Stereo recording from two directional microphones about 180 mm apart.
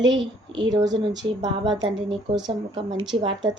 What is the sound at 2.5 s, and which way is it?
A woman's voice, 25° right (ahead or behind).